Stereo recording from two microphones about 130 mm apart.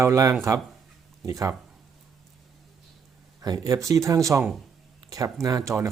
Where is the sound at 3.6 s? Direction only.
25° right (ahead or behind).